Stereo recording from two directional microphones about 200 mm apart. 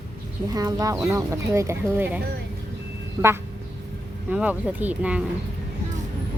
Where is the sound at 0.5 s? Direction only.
15° right (ahead or behind).